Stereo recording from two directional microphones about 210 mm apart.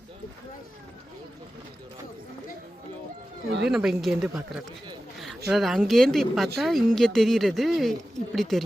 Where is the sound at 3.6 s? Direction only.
Centre (ahead or behind).